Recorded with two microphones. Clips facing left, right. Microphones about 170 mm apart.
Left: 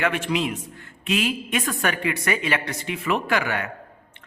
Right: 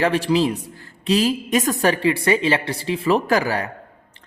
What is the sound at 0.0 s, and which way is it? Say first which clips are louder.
A woman's voice: right 6 dB; 35° right (ahead or behind).